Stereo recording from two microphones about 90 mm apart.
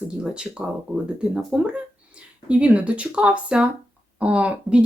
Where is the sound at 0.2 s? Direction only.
10° right (ahead or behind).